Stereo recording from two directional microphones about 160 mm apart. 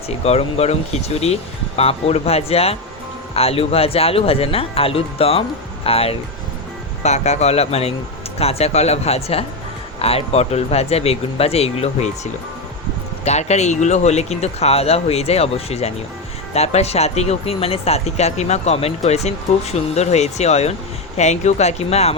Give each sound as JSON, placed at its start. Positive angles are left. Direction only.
{"t": 0.1, "sound": "speech", "side_deg": 40}